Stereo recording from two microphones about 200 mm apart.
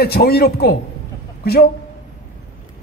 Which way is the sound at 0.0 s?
50° left (ahead or behind).